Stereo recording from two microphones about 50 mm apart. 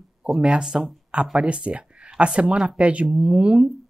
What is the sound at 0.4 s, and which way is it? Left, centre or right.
Speech, centre.